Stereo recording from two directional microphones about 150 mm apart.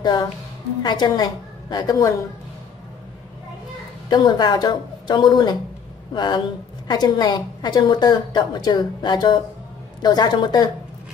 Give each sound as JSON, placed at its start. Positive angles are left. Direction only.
{"t": 0.0, "sound": "a woman's voice", "side_deg": 30}
{"t": 4.1, "sound": "a woman's voice", "side_deg": 30}